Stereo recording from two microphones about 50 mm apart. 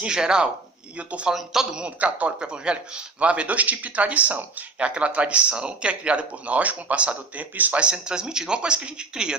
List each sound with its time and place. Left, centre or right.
0.0 s speech: centre
0.9 s a man's voice: right
1.3 s speech: centre
1.8 s a man's voice: right
7.8 s speech: right